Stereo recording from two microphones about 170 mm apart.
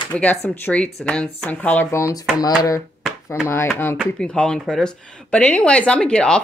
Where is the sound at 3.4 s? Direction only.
15° left (ahead or behind).